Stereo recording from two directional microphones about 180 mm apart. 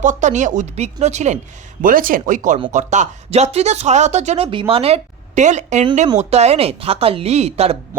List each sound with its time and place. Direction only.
0.0 s speech: 45° right (ahead or behind)
1.8 s speech: 50° right (ahead or behind); by 7.8 s 35° right (ahead or behind)